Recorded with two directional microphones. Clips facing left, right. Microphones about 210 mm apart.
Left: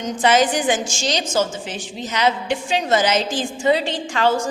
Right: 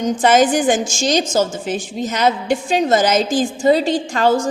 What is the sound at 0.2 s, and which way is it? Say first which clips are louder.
A woman's voice: right 2 dB; 45° right (ahead or behind).